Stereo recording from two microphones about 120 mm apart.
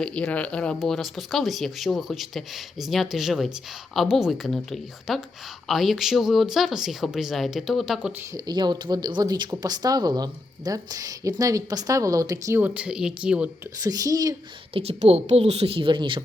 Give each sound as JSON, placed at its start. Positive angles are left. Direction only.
{"t": 0.0, "sound": "speech", "side_deg": 10}
{"t": 8.3, "sound": "speech", "side_deg": -35}
{"t": 12.5, "sound": "speech", "side_deg": -10}
{"t": 13.8, "sound": "speech", "side_deg": -30}
{"t": 14.7, "sound": "a woman's voice", "side_deg": -55}